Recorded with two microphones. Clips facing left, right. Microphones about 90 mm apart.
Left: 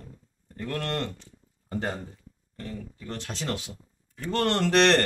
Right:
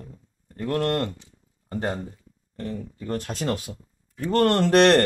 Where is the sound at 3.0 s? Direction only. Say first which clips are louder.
Right 8 dB; 45° right (ahead or behind).